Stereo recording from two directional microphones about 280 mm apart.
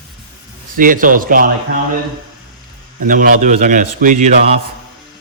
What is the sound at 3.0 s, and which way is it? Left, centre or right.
A man's voice, right.